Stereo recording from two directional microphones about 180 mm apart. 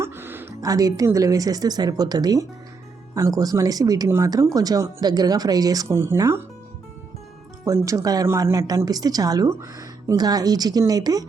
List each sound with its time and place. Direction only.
0.0 s a woman's voice: 10° right (ahead or behind)
7.6 s speech: 15° right (ahead or behind)